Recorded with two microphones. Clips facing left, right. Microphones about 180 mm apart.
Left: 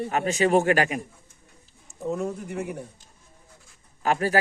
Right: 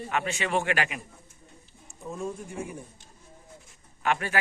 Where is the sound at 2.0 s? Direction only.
70° left (ahead or behind).